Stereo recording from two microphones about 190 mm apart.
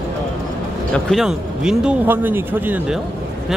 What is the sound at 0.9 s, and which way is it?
Speech, centre (ahead or behind).